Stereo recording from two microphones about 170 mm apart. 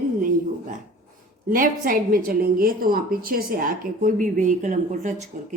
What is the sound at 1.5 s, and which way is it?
A woman's voice, 55° right (ahead or behind).